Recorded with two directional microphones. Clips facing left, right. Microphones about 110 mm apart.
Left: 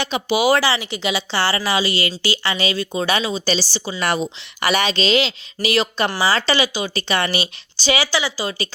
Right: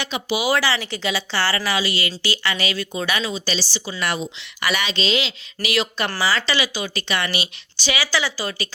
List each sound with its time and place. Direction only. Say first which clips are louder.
0.0 s speech: left 4 dB; 35° left (ahead or behind)
0.5 s speech: left 3 dB; 25° left (ahead or behind)
3.4 s speech: left 5 dB; 40° left (ahead or behind)